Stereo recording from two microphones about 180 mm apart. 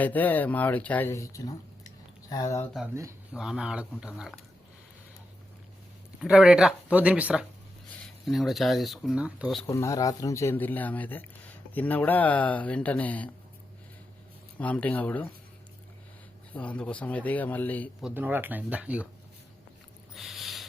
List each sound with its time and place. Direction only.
0.0 s speech: 10° left (ahead or behind)
2.9 s speech: 15° right (ahead or behind)
3.3 s speech: 5° right (ahead or behind)
6.2 s speech: 5° right (ahead or behind)
9.6 s speech: 15° left (ahead or behind)
14.6 s speech: 10° left (ahead or behind)
16.6 s speech: 5° left (ahead or behind)
18.0 s speech: 10° right (ahead or behind)
20.1 s owl: centre (ahead or behind)